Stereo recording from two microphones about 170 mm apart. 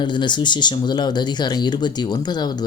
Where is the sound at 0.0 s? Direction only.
25° left (ahead or behind).